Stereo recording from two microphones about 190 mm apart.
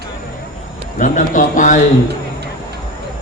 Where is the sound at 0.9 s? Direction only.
40° left (ahead or behind).